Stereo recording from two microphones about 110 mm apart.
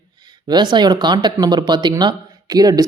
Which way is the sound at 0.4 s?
45° right (ahead or behind).